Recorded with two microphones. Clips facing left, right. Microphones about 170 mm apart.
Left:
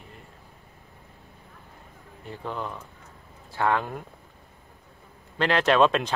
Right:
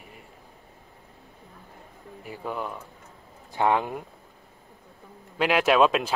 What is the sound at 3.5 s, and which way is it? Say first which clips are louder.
Speech: right 2 dB; 15° right (ahead or behind).